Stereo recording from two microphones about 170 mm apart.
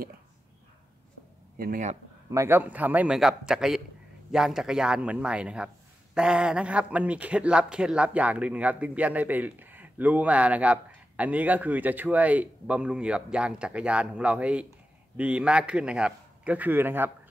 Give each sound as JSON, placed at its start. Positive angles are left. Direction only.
{"t": 1.6, "sound": "speech", "side_deg": -50}
{"t": 2.3, "sound": "a man's voice", "side_deg": -15}